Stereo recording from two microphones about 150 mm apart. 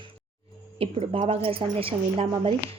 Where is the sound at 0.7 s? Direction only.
40° right (ahead or behind).